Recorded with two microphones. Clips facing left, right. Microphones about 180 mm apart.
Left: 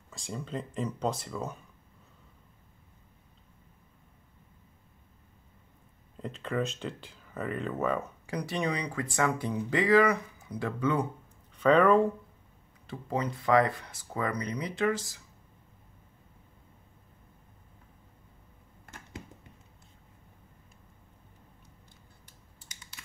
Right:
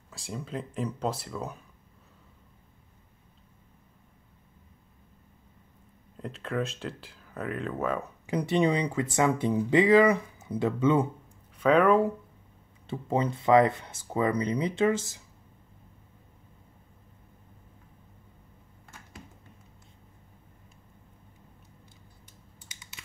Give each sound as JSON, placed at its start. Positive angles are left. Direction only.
{"t": 0.2, "sound": "speech", "side_deg": 0}
{"t": 6.1, "sound": "speech", "side_deg": 0}
{"t": 8.3, "sound": "speech", "side_deg": -25}
{"t": 11.5, "sound": "speech", "side_deg": -5}
{"t": 12.8, "sound": "speech", "side_deg": -25}